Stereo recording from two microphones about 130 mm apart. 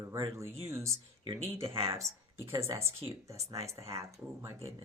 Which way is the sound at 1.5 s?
20° right (ahead or behind).